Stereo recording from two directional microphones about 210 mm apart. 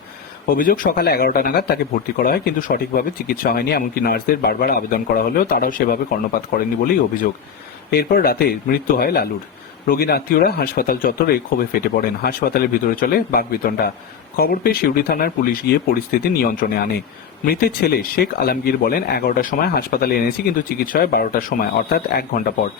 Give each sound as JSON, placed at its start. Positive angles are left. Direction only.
{"t": 0.5, "sound": "speech", "side_deg": 40}